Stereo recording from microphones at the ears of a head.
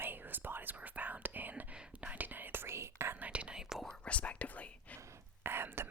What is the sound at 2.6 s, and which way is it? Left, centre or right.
Whispering, right.